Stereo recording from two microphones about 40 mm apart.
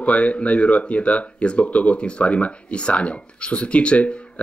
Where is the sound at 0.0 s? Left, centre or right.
Left.